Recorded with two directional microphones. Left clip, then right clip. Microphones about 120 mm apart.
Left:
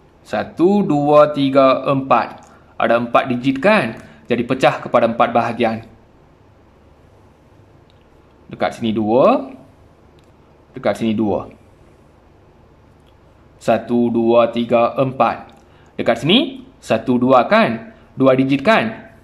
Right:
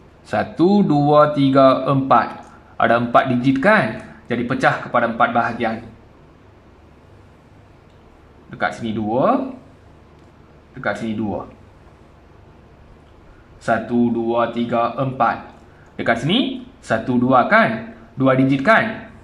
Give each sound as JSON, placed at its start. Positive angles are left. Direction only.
{"t": 0.3, "sound": "speech", "side_deg": 5}
{"t": 4.5, "sound": "speech", "side_deg": 20}
{"t": 8.5, "sound": "speech", "side_deg": 20}
{"t": 10.7, "sound": "speech", "side_deg": 30}
{"t": 13.8, "sound": "speech", "side_deg": 30}